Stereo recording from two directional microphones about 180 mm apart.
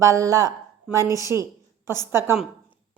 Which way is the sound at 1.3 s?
15° right (ahead or behind).